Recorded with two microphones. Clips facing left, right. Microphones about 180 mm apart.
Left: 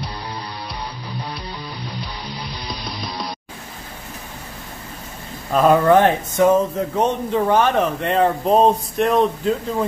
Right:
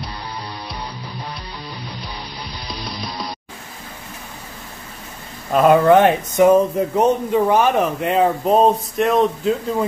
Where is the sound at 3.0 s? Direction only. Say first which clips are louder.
Even; centre (ahead or behind).